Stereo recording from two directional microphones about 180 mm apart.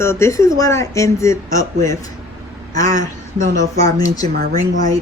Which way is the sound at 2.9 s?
45° right (ahead or behind).